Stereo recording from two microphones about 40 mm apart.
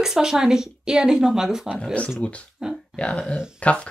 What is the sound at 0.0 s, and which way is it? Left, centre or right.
Speech, centre.